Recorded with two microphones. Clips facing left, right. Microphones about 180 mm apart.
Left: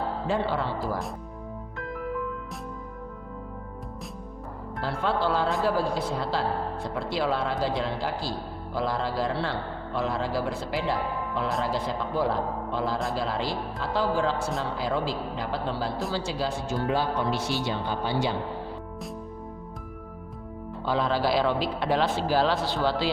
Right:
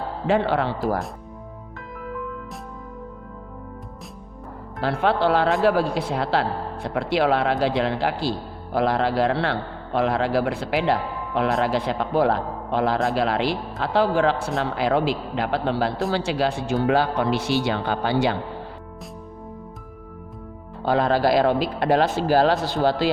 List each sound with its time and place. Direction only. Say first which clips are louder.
0.3 s speech: right 8 dB; 70° right (ahead or behind)
4.8 s speech: right 6 dB; 70° right (ahead or behind)
20.8 s speech: right 6 dB; 60° right (ahead or behind)